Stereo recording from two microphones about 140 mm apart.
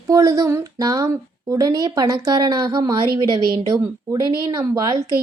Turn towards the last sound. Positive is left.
turn(degrees=-25)  # may be behind; listen again after turning